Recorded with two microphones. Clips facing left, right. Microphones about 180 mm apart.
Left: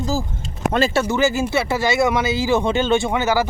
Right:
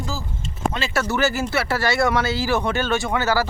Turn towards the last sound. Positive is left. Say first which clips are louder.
# left 3 dB
turn(degrees=20)  # may be behind; listen again after turning